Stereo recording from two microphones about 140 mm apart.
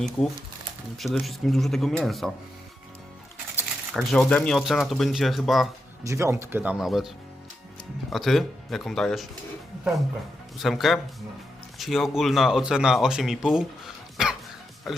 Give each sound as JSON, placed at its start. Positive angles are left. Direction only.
{"t": 0.9, "sound": "speech", "side_deg": 0}
{"t": 3.9, "sound": "speech", "side_deg": 5}
{"t": 6.1, "sound": "speech", "side_deg": -20}
{"t": 6.7, "sound": "speech", "side_deg": 0}
{"t": 8.1, "sound": "speech", "side_deg": 0}
{"t": 10.6, "sound": "speech", "side_deg": 0}